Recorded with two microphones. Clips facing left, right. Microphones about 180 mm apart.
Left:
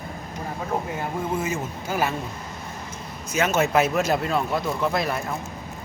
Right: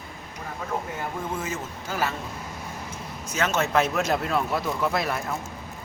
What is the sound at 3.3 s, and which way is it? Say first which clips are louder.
Speech: left 3 dB; 10° left (ahead or behind).